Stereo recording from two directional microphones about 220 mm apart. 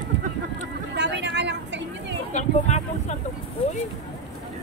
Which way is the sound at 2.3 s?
30° left (ahead or behind).